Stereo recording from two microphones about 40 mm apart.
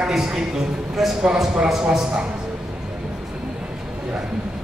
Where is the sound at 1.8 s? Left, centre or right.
Centre.